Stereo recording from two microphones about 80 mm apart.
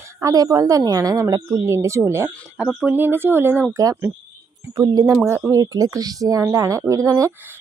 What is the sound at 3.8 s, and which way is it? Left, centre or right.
Speech, right.